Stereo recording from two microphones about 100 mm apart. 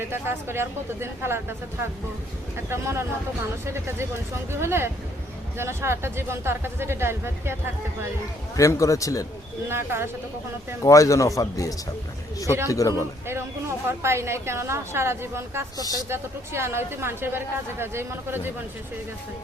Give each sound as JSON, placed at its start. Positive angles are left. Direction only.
{"t": 0.1, "sound": "a woman's voice", "side_deg": -25}
{"t": 2.6, "sound": "a woman's voice", "side_deg": -25}
{"t": 8.5, "sound": "speech", "side_deg": 35}
{"t": 9.6, "sound": "a woman's voice", "side_deg": -25}
{"t": 10.8, "sound": "speech", "side_deg": 35}
{"t": 13.2, "sound": "a woman's voice", "side_deg": -25}
{"t": 15.8, "sound": "speech", "side_deg": 40}
{"t": 16.0, "sound": "a woman's voice", "side_deg": -25}